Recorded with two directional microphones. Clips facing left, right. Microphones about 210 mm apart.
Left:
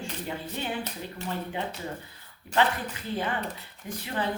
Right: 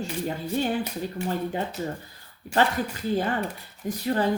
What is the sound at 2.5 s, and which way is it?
Speech, 45° right (ahead or behind).